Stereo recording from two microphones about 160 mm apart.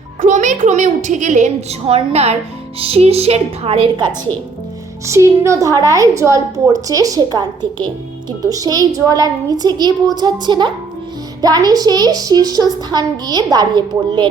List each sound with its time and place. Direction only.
0.2 s a child's voice: 50° right (ahead or behind); by 4.1 s 30° right (ahead or behind)
5.0 s a woman's voice: 15° right (ahead or behind)